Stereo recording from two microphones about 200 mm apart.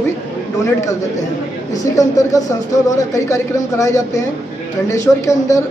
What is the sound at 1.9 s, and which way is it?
A woman's voice, 15° left (ahead or behind).